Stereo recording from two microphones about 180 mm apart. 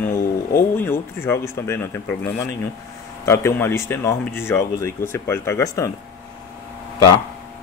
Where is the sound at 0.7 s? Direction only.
15° left (ahead or behind).